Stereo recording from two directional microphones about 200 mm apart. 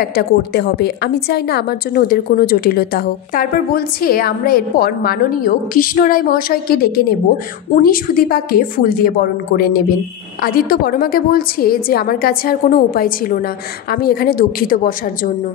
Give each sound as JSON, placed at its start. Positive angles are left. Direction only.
{"t": 0.0, "sound": "a woman's voice", "side_deg": 50}